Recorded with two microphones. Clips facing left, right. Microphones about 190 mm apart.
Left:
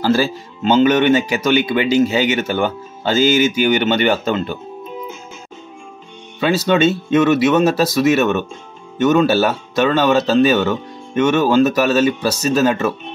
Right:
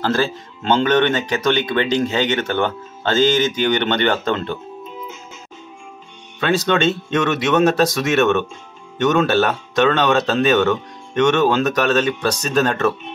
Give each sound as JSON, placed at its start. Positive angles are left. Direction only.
{"t": 0.0, "sound": "speech", "side_deg": 10}
{"t": 6.4, "sound": "speech", "side_deg": 5}